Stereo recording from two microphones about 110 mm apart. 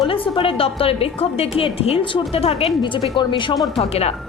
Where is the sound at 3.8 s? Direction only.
70° left (ahead or behind).